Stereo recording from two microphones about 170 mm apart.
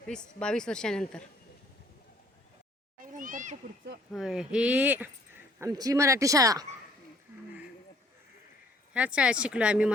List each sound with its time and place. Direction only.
0.1 s speech: 5° left (ahead or behind)
3.0 s a sound: 55° right (ahead or behind)
4.1 s speech: 5° right (ahead or behind); by 6.7 s 20° right (ahead or behind)
8.9 s speech: 5° right (ahead or behind)